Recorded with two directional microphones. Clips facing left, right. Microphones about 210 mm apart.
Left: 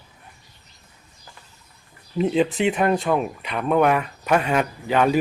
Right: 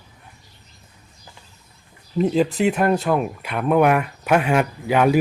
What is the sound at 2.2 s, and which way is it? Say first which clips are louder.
Speech: right 1 dB; centre (ahead or behind).